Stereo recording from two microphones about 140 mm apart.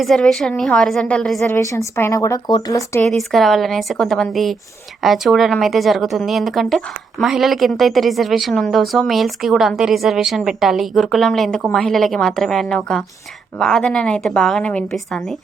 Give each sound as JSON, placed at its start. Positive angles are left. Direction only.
{"t": 0.0, "sound": "speech", "side_deg": 0}
{"t": 1.5, "sound": "a woman's voice", "side_deg": 20}
{"t": 3.1, "sound": "speech", "side_deg": 0}